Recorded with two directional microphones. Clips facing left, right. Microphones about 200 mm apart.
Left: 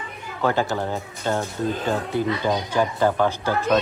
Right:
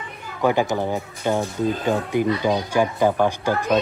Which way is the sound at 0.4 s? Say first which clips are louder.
Right 3 dB; 15° right (ahead or behind).